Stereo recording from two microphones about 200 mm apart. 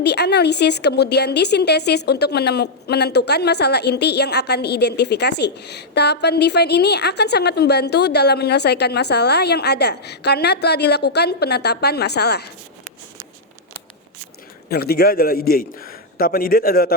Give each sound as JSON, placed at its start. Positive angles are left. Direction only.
{"t": 0.0, "sound": "a woman's voice", "side_deg": 55}
{"t": 14.7, "sound": "a man's voice", "side_deg": 50}